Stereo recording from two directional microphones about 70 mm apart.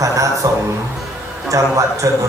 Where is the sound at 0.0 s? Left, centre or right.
Right.